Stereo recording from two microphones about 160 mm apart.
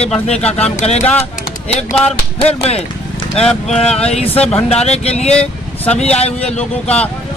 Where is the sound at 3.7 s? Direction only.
40° left (ahead or behind).